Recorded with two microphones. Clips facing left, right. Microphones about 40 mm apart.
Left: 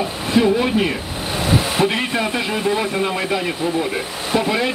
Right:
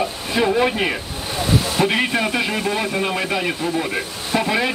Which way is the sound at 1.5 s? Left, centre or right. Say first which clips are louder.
Left 1 dB; centre.